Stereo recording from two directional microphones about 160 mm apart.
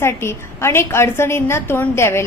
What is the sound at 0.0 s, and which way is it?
A woman's voice, 15° left (ahead or behind).